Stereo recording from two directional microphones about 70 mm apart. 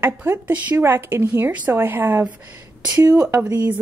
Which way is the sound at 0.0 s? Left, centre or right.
Right.